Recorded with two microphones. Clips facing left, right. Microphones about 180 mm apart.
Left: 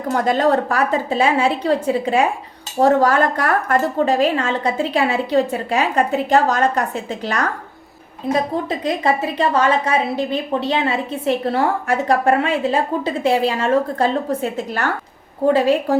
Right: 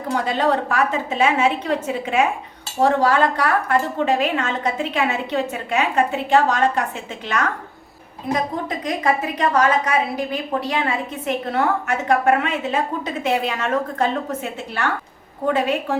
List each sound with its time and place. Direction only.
0.1 s a woman's voice: 45° left (ahead or behind)
2.8 s a woman's voice: 45° left (ahead or behind)
8.8 s a woman's voice: 30° left (ahead or behind)